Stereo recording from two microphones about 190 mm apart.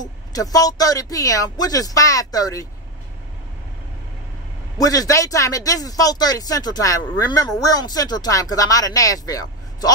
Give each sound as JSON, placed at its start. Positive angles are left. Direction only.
{"t": 0.0, "sound": "speech", "side_deg": 20}
{"t": 4.7, "sound": "speech", "side_deg": 20}